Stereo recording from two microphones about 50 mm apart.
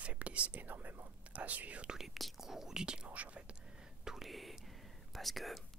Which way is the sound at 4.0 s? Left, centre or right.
Centre.